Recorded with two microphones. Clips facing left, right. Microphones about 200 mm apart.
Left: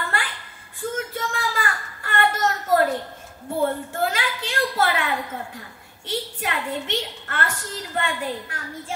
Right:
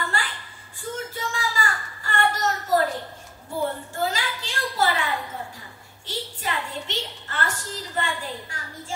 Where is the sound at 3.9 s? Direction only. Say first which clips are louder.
Left 2 dB; 60° left (ahead or behind).